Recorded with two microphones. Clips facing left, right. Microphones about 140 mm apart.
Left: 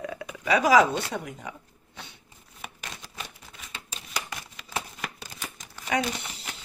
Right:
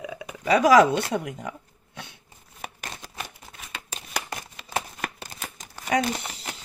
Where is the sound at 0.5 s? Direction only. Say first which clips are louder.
Right 3 dB; 50° right (ahead or behind).